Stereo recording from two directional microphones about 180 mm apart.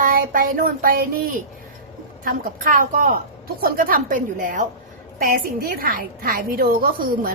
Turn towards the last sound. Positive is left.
turn(degrees=-55)  # may be behind; listen again after turning